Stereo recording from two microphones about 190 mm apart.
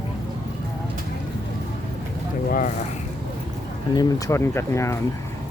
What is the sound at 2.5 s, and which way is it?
Speech, 45° left (ahead or behind).